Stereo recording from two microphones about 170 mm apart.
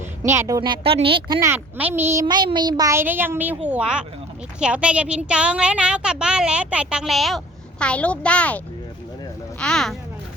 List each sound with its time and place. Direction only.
0.0 s a woman's voice: 15° right (ahead or behind); by 1.4 s 30° right (ahead or behind)
1.4 s speech: 15° right (ahead or behind)
2.2 s a woman's voice: 25° right (ahead or behind); by 10.0 s 5° left (ahead or behind)